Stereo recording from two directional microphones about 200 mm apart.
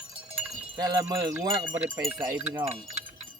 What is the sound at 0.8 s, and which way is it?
Music, 20° right (ahead or behind).